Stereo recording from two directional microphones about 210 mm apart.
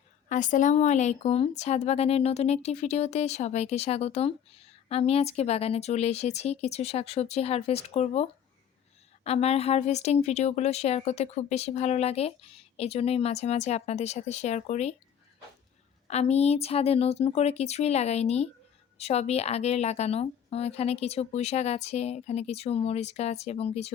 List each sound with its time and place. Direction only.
0.3 s a woman's voice: 40° left (ahead or behind)
16.0 s a woman's voice: 30° left (ahead or behind)